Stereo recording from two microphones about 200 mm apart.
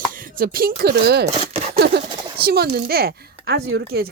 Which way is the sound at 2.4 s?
50° right (ahead or behind).